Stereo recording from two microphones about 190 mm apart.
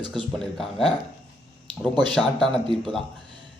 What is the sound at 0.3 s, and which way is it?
Speech, centre (ahead or behind).